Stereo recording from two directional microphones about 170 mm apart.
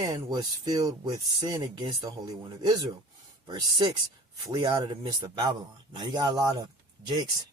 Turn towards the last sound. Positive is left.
turn(degrees=-25)  # may be behind; listen again after turning